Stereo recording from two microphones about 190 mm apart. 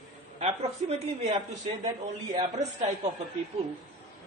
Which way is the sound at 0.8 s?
35° right (ahead or behind).